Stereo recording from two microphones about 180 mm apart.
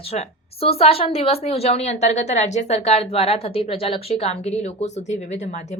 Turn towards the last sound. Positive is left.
turn(degrees=40)  # may be behind; listen again after turning